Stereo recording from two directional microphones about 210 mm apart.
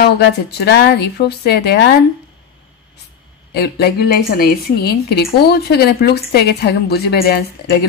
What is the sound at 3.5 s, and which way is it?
Speech, 50° left (ahead or behind).